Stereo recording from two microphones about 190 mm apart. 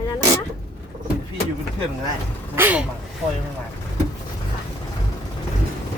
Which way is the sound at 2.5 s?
10° right (ahead or behind).